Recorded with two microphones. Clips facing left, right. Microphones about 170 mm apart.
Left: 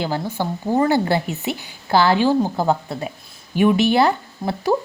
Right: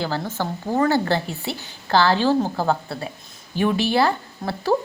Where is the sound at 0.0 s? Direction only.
15° left (ahead or behind).